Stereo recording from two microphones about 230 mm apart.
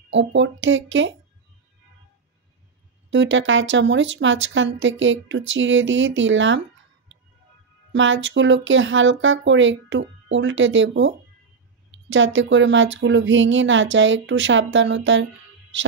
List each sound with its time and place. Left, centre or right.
0.1 s speech: right
3.1 s speech: right
7.9 s speech: right